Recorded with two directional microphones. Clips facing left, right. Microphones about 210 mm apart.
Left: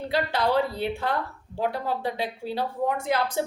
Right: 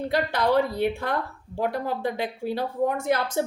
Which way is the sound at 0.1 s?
50° right (ahead or behind).